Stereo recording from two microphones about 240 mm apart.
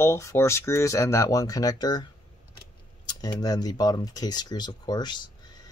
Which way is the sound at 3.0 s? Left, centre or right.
Centre.